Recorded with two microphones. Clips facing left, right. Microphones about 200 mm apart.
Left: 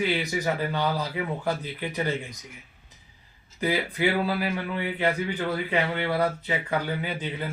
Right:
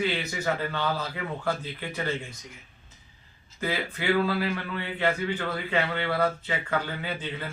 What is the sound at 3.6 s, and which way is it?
A man's voice, 15° left (ahead or behind).